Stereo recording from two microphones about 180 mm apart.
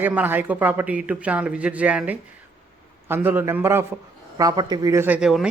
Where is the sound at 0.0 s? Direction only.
10° right (ahead or behind).